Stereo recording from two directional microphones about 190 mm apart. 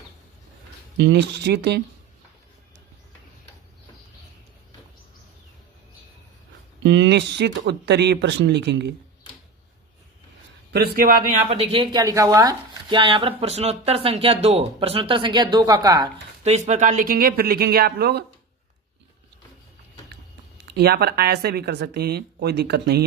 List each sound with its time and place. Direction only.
0.9 s speech: 70° right (ahead or behind)
6.8 s speech: 70° right (ahead or behind)
10.7 s speech: 55° right (ahead or behind)
11.4 s speech: 30° right (ahead or behind)
16.4 s speech: 35° right (ahead or behind); by 18.3 s 60° right (ahead or behind)
20.7 s speech: 55° right (ahead or behind)